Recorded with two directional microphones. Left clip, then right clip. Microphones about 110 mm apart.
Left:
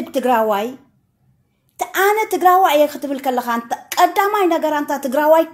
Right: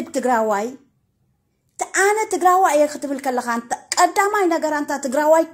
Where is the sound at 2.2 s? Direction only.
20° right (ahead or behind).